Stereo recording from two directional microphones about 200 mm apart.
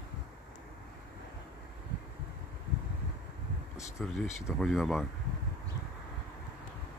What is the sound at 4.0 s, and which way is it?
Speech, 5° left (ahead or behind).